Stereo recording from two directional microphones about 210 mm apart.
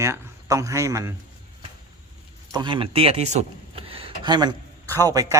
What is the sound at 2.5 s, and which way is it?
A man's voice, 20° right (ahead or behind).